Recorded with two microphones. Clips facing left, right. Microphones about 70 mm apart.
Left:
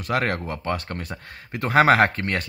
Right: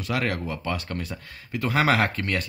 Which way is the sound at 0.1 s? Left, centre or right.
Left.